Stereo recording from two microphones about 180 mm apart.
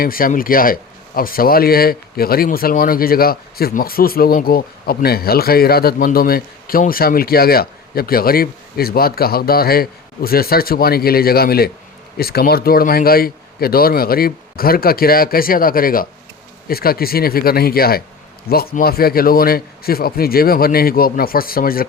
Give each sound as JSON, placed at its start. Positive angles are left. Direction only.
{"t": 0.0, "sound": "speech", "side_deg": 55}